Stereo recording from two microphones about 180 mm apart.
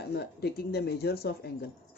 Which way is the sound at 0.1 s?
65° left (ahead or behind).